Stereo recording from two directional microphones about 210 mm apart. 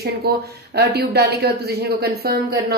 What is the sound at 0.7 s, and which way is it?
A woman's voice, 50° right (ahead or behind).